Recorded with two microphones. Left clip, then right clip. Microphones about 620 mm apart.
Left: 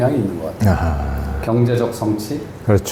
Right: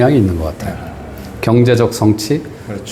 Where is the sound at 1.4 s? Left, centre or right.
Right.